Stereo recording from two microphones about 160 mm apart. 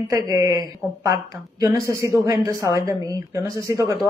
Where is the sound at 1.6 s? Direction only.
20° right (ahead or behind).